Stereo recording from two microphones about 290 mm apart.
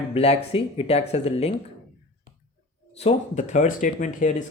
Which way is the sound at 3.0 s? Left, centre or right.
Left.